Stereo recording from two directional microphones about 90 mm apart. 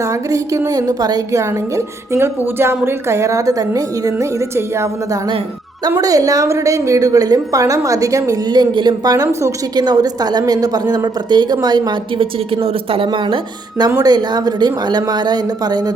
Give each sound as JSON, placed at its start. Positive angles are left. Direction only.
{"t": 0.0, "sound": "a woman's voice", "side_deg": -35}
{"t": 6.0, "sound": "a woman's voice", "side_deg": -40}